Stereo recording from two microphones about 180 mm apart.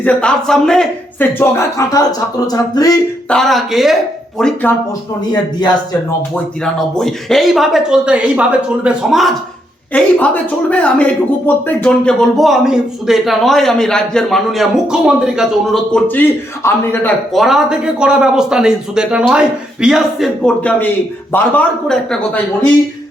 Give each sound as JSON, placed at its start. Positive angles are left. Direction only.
{"t": 0.0, "sound": "speech", "side_deg": 5}
{"t": 2.5, "sound": "a sound", "side_deg": 20}
{"t": 3.2, "sound": "speech", "side_deg": 0}
{"t": 5.3, "sound": "a sound", "side_deg": 25}
{"t": 6.3, "sound": "speech", "side_deg": 5}
{"t": 17.3, "sound": "speech", "side_deg": 0}